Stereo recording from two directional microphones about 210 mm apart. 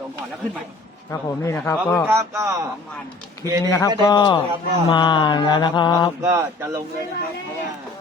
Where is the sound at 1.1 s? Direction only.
15° left (ahead or behind).